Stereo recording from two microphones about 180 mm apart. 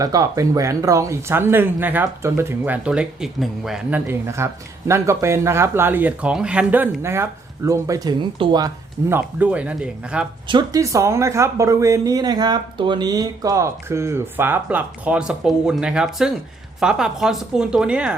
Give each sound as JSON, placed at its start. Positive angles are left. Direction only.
{"t": 0.0, "sound": "speech", "side_deg": -20}
{"t": 10.5, "sound": "a woman's voice", "side_deg": -20}